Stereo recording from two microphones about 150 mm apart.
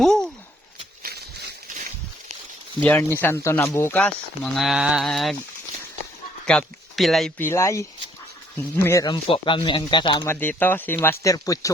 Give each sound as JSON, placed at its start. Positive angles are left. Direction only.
{"t": 0.0, "sound": "a sound", "side_deg": 5}
{"t": 1.0, "sound": "a sound", "side_deg": -90}
{"t": 3.0, "sound": "speech", "side_deg": 15}
{"t": 4.5, "sound": "speech", "side_deg": 0}
{"t": 6.4, "sound": "speech", "side_deg": 5}
{"t": 7.3, "sound": "speech", "side_deg": 15}
{"t": 9.0, "sound": "speech", "side_deg": 35}
{"t": 10.2, "sound": "speech", "side_deg": 10}